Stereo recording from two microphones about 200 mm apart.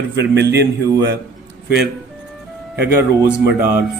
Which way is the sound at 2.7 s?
55° right (ahead or behind).